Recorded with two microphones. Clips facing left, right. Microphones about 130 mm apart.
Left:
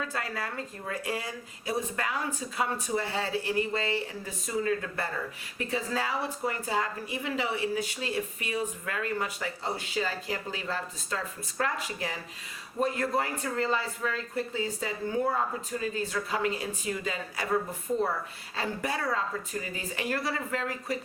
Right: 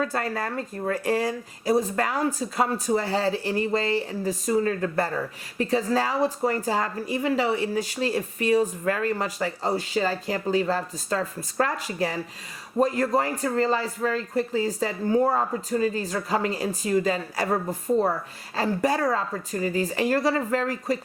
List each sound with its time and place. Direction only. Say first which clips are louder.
0.0 s speech: right 7 dB; 45° right (ahead or behind)